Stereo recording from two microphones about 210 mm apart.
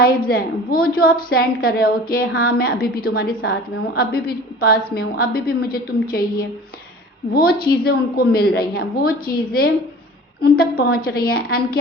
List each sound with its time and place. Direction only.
0.3 s a woman's voice: 45° left (ahead or behind)